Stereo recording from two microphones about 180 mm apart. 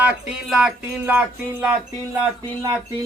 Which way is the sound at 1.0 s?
10° right (ahead or behind).